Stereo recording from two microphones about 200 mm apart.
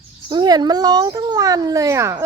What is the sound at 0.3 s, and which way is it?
Speech, 20° right (ahead or behind).